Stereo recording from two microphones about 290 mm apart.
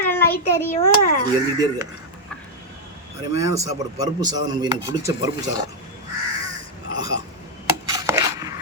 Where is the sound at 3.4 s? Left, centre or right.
Centre.